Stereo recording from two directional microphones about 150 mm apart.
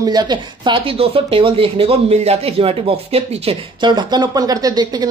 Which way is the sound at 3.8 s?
30° right (ahead or behind).